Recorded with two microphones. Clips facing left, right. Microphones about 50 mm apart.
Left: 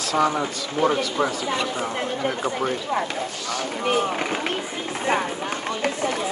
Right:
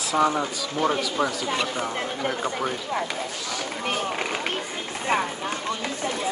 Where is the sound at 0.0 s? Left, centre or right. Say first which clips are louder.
Left 1 dB; centre.